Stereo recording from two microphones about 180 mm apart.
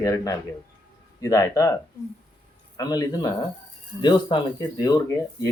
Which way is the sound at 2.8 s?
20° left (ahead or behind).